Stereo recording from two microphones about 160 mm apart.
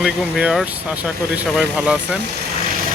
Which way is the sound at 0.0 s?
5° right (ahead or behind).